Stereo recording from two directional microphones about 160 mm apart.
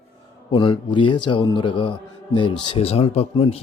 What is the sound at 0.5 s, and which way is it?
A man's voice, 30° left (ahead or behind).